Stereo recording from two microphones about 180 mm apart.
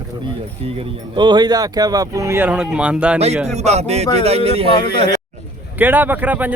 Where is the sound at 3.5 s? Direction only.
35° right (ahead or behind).